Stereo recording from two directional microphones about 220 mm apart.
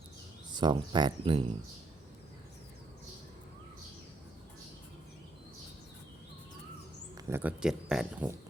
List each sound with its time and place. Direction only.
0.5 s speech: 20° right (ahead or behind)
7.2 s speech: 10° right (ahead or behind)